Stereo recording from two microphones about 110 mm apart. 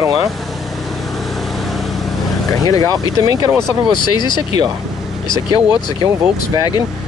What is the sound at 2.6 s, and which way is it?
Speech, 35° left (ahead or behind).